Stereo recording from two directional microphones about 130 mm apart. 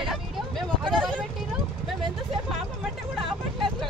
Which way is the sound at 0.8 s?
5° left (ahead or behind).